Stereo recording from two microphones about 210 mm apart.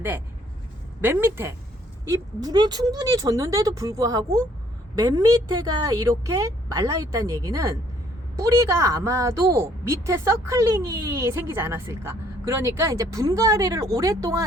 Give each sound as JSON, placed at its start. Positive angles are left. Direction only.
{"t": 1.0, "sound": "a woman's voice", "side_deg": -10}
{"t": 5.6, "sound": "a woman's voice", "side_deg": -15}